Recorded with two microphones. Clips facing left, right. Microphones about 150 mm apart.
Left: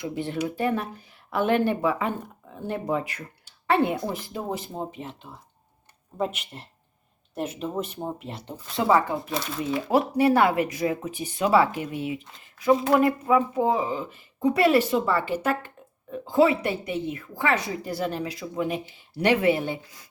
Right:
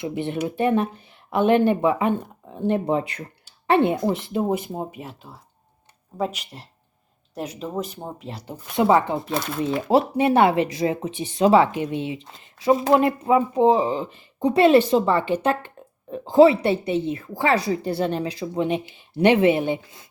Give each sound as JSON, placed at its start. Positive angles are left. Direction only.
{"t": 0.0, "sound": "speech", "side_deg": -20}
{"t": 8.7, "sound": "speech", "side_deg": -20}